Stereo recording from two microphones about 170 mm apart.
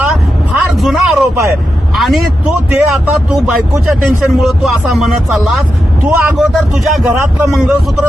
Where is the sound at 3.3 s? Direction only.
Centre (ahead or behind).